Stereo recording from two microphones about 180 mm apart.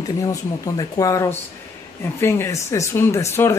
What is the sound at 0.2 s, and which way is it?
Speech, 20° left (ahead or behind).